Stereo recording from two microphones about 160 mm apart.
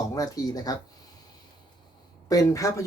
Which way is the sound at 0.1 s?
20° left (ahead or behind).